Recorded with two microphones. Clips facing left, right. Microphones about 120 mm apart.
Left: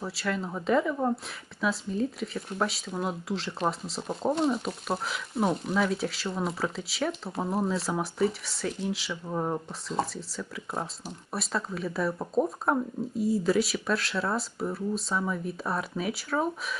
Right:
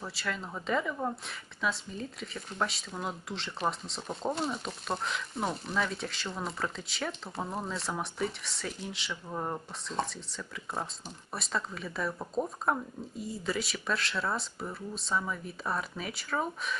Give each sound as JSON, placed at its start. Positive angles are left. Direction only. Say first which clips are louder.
{"t": 0.0, "sound": "speech", "louder": "left 6 dB", "side_deg": 0}
{"t": 12.4, "sound": "speech", "louder": "left 6 dB", "side_deg": 30}
{"t": 13.1, "sound": "speech", "louder": "left 10 dB", "side_deg": 0}